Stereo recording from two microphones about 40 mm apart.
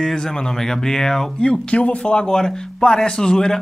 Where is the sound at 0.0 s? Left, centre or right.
Centre.